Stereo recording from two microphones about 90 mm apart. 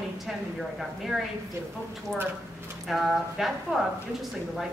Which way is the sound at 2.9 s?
Centre (ahead or behind).